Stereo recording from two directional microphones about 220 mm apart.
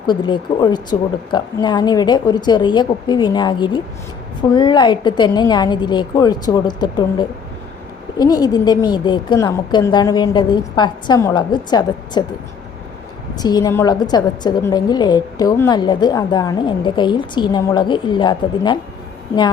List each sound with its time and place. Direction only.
0.0 s a woman's voice: 20° left (ahead or behind)
13.3 s a woman's voice: 15° left (ahead or behind)